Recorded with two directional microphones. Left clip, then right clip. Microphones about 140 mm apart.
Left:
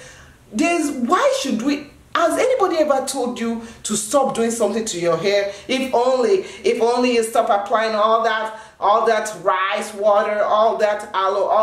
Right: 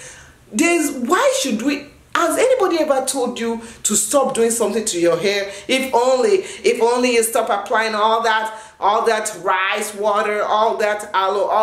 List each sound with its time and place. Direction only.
0.6 s a woman's voice: 5° right (ahead or behind)